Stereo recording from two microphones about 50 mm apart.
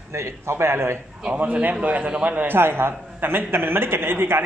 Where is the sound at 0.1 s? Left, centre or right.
Right.